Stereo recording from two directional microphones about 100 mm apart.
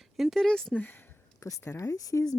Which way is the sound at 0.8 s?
20° left (ahead or behind).